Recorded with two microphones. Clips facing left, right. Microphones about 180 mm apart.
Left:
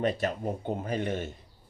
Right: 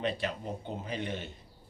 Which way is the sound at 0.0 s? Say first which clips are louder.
Left 5 dB; 45° left (ahead or behind).